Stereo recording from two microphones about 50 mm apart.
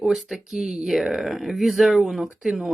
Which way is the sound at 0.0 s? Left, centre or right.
Centre.